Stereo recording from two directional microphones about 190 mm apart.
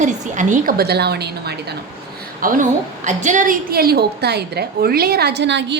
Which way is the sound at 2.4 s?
45° right (ahead or behind).